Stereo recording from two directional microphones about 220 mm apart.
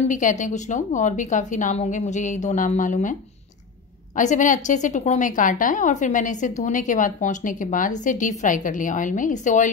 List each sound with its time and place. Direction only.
0.1 s a woman's voice: 35° left (ahead or behind)